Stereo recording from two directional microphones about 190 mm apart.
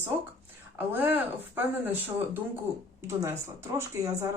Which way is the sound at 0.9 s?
10° right (ahead or behind).